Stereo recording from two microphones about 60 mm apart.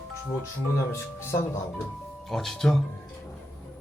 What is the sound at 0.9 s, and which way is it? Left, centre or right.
Speech, left.